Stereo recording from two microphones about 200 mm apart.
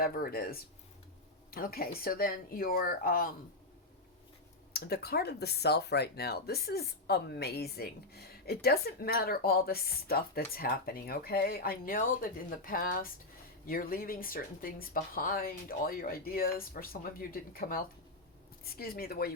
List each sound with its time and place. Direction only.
0.0 s speech: 45° left (ahead or behind)
4.7 s speech: 50° left (ahead or behind)